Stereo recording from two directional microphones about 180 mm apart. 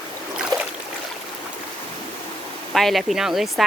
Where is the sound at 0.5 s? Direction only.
20° right (ahead or behind).